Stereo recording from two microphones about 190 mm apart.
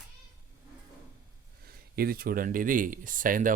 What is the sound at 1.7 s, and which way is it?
Speech, 50° right (ahead or behind).